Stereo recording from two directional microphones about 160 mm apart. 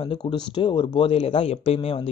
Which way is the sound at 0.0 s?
30° left (ahead or behind).